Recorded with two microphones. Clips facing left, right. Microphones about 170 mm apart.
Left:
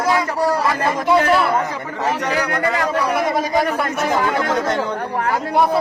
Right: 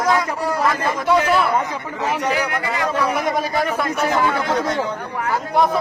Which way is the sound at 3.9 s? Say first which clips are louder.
Right 1 dB; 45° left (ahead or behind).